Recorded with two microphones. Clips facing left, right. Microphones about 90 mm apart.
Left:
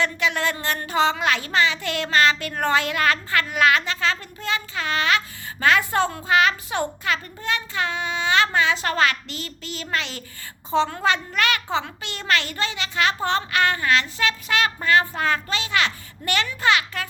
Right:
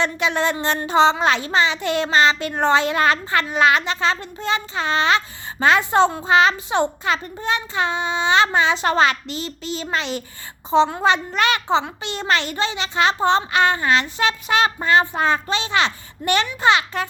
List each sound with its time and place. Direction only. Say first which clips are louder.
0.0 s a woman's voice: right 3 dB; 20° right (ahead or behind)